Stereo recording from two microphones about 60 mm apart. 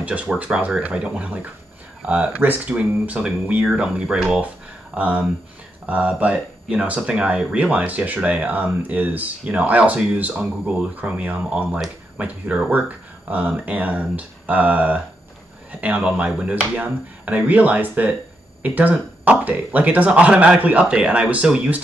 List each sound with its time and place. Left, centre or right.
0.0 s speech: right